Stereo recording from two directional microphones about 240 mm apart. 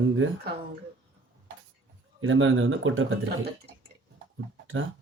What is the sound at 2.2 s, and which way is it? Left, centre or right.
Speech, right.